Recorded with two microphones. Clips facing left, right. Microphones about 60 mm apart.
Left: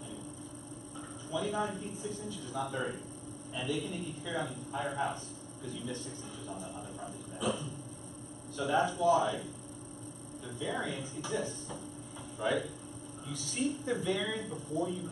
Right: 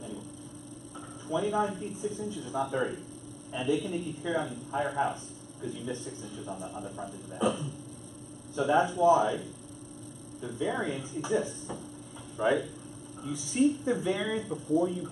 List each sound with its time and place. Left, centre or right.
1.3 s speech: centre
1.7 s a man's voice: centre
7.4 s speech: right
10.4 s speech: centre